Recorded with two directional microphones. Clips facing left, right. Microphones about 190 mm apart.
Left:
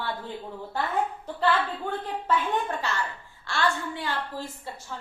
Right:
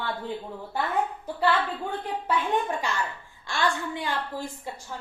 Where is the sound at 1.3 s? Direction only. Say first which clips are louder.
Right 1 dB; 10° right (ahead or behind).